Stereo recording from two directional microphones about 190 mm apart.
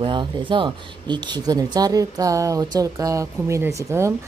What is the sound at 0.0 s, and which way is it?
Speech, 25° right (ahead or behind).